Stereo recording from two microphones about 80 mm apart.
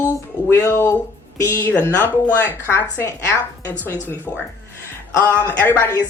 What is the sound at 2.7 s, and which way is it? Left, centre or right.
Speech, left.